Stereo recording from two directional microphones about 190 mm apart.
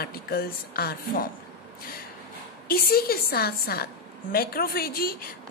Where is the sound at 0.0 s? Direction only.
55° left (ahead or behind).